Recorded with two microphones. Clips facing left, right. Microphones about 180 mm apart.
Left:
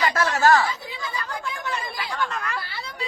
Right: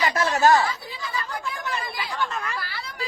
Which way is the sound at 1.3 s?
Centre (ahead or behind).